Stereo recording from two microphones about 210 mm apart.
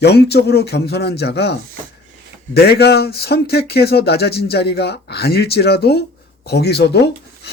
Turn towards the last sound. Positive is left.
turn(degrees=50)  # may be behind; listen again after turning